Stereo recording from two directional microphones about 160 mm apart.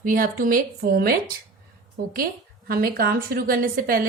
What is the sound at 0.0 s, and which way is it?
Speech, 60° right (ahead or behind).